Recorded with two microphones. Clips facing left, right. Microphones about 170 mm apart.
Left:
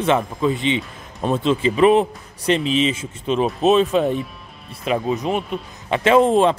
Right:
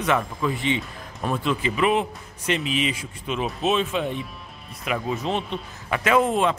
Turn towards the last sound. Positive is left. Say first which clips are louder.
# left 6 dB
turn(degrees=30)  # may be behind; listen again after turning